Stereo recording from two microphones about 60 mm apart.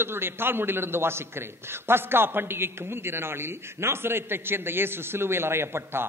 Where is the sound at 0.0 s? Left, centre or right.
Right.